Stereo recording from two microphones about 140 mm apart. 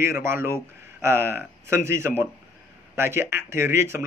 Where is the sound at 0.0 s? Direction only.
15° right (ahead or behind).